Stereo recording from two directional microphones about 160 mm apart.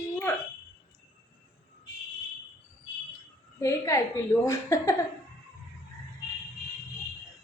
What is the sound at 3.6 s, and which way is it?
A woman's voice, 20° left (ahead or behind).